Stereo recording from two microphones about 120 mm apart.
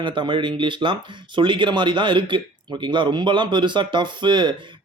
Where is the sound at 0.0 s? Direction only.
45° right (ahead or behind).